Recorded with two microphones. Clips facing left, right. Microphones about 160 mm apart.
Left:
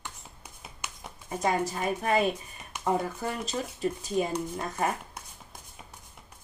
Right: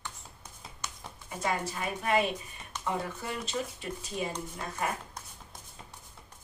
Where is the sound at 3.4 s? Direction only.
40° left (ahead or behind).